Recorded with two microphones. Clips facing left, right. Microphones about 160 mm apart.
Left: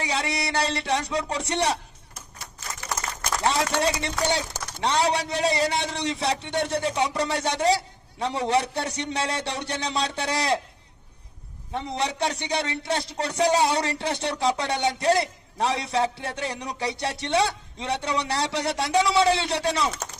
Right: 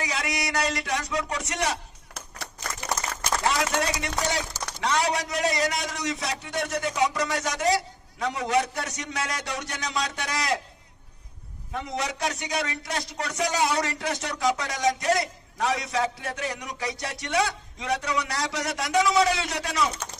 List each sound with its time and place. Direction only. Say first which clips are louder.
0.0 s a man's voice: left 2 dB; 30° left (ahead or behind)
3.4 s a man's voice: left 3 dB; 30° left (ahead or behind)
11.7 s a man's voice: left 2 dB; 30° left (ahead or behind)